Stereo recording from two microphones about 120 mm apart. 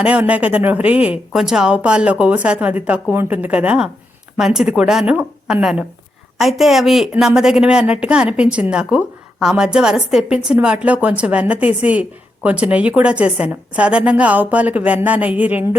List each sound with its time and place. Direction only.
0.0 s a woman's voice: 10° right (ahead or behind)